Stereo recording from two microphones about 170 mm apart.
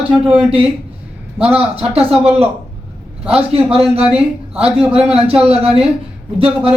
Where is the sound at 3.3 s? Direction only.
35° right (ahead or behind).